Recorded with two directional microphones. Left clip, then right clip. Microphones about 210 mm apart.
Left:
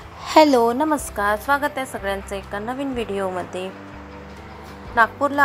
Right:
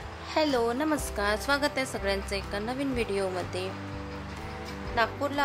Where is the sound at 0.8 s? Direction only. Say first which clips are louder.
Left 7 dB; centre (ahead or behind).